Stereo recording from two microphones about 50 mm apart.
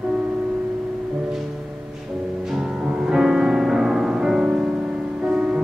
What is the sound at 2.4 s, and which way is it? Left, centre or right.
Music, centre.